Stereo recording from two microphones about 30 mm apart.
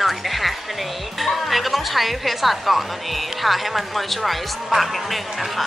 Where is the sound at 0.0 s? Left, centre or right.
Centre.